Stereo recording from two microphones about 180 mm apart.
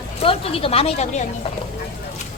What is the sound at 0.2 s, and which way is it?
Speech, 30° left (ahead or behind).